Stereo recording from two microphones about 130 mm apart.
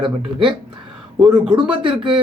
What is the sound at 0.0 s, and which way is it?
Speech, 40° right (ahead or behind).